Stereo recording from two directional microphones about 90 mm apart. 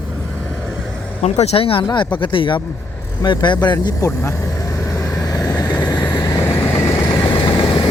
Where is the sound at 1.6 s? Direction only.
85° left; by 2.6 s 70° left (ahead or behind).